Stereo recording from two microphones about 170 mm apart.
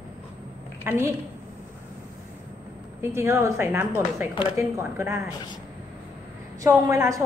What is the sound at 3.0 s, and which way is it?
Speech, 15° right (ahead or behind).